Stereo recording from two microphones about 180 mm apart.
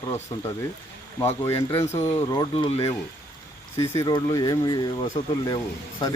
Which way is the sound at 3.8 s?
20° left (ahead or behind).